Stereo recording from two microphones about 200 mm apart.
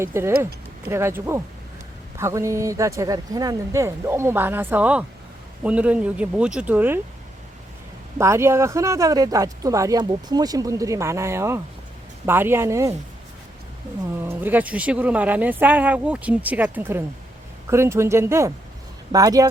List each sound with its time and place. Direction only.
0.0 s speech: 10° right (ahead or behind)
8.2 s speech: 15° right (ahead or behind)
14.2 s speech: 10° right (ahead or behind)